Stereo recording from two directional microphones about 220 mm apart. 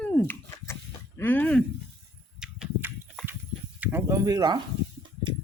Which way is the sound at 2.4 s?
5° right (ahead or behind).